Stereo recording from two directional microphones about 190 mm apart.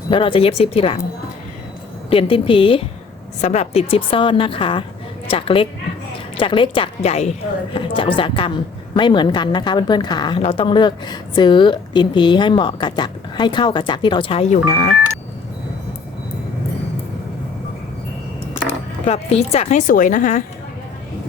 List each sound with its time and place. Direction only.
0.1 s a woman's voice: 25° left (ahead or behind)
2.0 s a woman's voice: 30° left (ahead or behind)
19.0 s speech: 35° left (ahead or behind)